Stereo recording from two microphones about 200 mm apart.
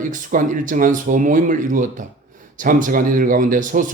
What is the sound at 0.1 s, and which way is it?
A man's voice, 40° right (ahead or behind).